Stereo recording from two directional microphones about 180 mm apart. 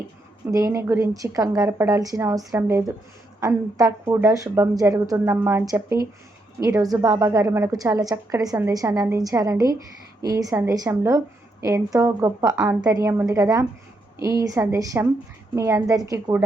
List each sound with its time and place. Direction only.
0.5 s a woman's voice: 15° right (ahead or behind)